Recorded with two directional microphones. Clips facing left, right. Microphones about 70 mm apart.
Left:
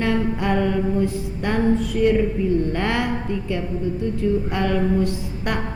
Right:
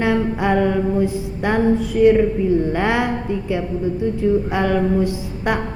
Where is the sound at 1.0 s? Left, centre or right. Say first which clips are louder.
Right 3 dB; centre.